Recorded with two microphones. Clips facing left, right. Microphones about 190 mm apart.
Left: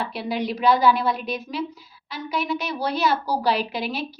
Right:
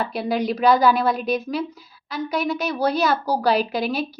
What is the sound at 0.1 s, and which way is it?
A woman's voice, 45° right (ahead or behind).